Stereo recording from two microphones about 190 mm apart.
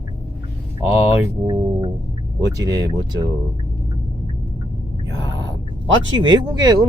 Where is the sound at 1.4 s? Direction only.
20° right (ahead or behind).